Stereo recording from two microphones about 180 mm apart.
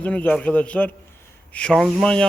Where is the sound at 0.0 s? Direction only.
10° left (ahead or behind).